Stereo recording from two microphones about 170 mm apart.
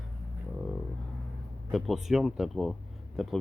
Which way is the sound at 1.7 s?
Centre (ahead or behind).